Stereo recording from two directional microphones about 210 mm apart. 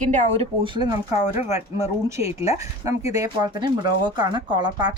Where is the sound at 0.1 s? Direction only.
30° right (ahead or behind).